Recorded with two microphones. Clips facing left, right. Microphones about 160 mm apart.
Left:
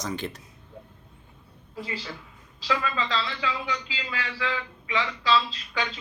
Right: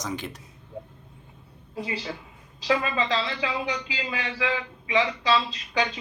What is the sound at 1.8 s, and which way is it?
A man's voice, 20° right (ahead or behind).